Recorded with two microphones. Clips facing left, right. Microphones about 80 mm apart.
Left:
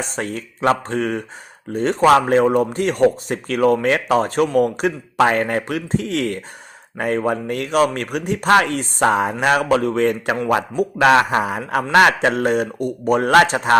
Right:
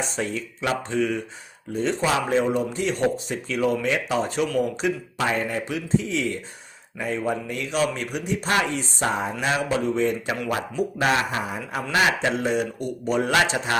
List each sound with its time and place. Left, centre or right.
0.0 s a man's voice: left